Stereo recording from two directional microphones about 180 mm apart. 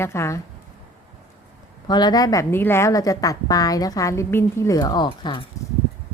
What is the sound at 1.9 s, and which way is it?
A woman's voice, 25° left (ahead or behind).